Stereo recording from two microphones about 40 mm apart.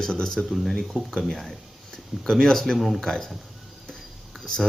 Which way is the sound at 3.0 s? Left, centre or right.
Centre.